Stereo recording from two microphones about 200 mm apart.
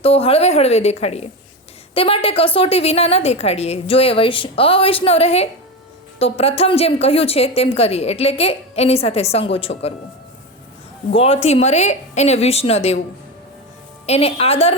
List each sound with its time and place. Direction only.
0.0 s a woman's voice: 30° left (ahead or behind)
11.1 s a woman's voice: 30° left (ahead or behind)
14.1 s a woman's voice: 30° left (ahead or behind)